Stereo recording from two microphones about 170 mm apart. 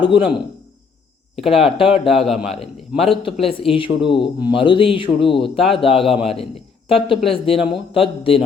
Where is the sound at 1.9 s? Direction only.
35° left (ahead or behind).